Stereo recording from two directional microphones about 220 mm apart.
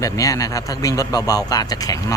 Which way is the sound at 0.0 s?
15° left (ahead or behind).